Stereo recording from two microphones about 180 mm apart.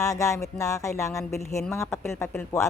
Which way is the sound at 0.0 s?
15° left (ahead or behind).